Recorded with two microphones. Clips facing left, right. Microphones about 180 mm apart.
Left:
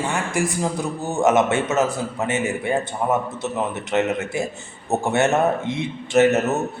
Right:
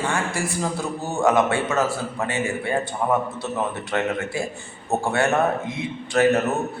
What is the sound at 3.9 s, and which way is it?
A man's voice, 20° left (ahead or behind).